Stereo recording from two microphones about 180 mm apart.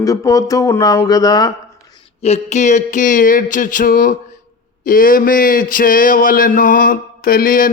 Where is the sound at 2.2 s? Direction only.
40° left (ahead or behind).